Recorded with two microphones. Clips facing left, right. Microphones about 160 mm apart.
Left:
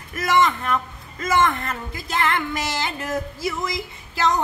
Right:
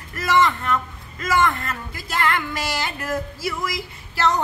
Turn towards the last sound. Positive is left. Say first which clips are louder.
# even
turn(degrees=15)  # may be behind; listen again after turning